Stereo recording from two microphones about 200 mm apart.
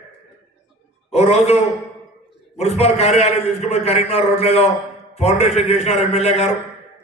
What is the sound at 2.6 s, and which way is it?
A man's voice, 30° left (ahead or behind).